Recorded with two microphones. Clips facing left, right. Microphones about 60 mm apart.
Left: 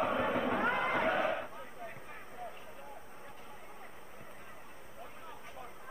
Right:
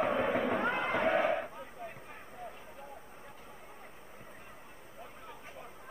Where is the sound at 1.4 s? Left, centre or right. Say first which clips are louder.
Right 1 dB; centre.